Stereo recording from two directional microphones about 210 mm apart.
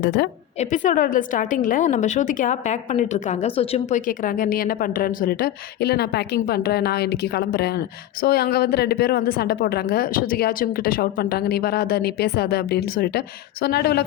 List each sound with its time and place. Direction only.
0.0 s a woman's voice: 50° left (ahead or behind)
0.6 s a woman's voice: 35° left (ahead or behind)